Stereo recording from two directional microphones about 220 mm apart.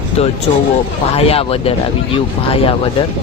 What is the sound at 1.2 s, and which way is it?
Speech, 25° left (ahead or behind).